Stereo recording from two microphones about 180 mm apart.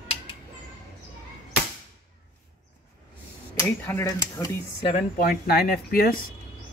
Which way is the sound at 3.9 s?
15° left (ahead or behind).